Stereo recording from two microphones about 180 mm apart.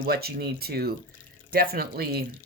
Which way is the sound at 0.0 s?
60° right (ahead or behind).